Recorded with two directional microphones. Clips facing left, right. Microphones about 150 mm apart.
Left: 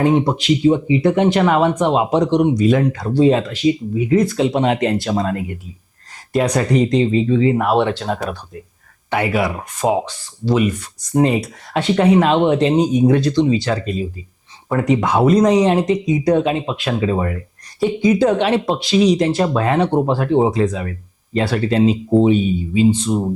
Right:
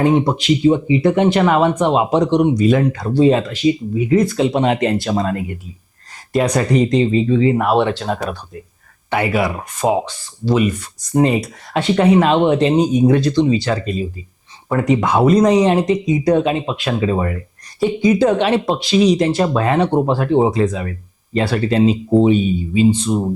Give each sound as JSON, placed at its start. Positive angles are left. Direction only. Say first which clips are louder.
{"t": 0.0, "sound": "speech", "louder": "right 1 dB", "side_deg": -25}